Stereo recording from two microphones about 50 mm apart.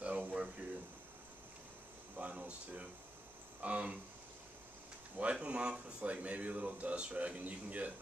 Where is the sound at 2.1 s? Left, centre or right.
Right.